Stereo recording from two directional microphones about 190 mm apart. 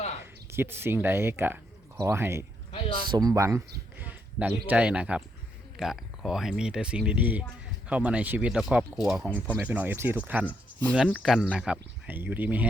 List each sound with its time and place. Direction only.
0.2 s speech: 10° right (ahead or behind)
2.7 s speech: 25° left (ahead or behind)
3.1 s speech: 20° right (ahead or behind)